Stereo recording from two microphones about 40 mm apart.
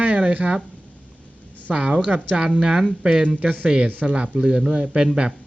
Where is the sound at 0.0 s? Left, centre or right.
Right.